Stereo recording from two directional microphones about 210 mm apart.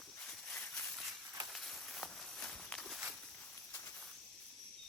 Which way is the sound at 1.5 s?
Centre (ahead or behind).